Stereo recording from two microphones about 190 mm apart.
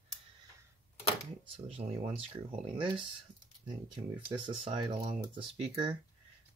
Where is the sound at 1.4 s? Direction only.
30° right (ahead or behind).